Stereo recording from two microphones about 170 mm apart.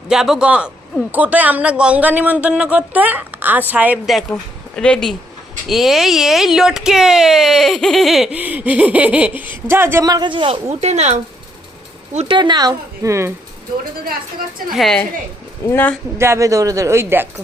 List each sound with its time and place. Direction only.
0.1 s speech: 5° right (ahead or behind); by 11.2 s 40° right (ahead or behind)
12.3 s speech: 25° right (ahead or behind)
14.7 s a woman's voice: centre (ahead or behind)
15.6 s speech: 10° left (ahead or behind)
16.1 s speech: 15° right (ahead or behind)